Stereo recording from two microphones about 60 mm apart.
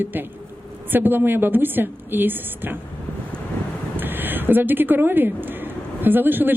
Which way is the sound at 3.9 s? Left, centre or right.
Right.